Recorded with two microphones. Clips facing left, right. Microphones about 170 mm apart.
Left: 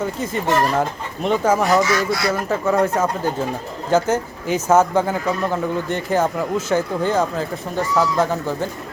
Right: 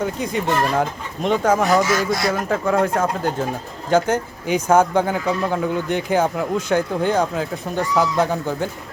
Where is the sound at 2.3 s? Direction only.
5° left (ahead or behind).